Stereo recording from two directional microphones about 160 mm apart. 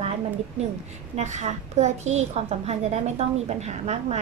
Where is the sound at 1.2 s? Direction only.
45° right (ahead or behind).